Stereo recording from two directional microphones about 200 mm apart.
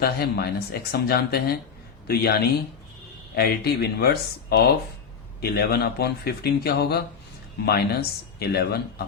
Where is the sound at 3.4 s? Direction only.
50° left (ahead or behind).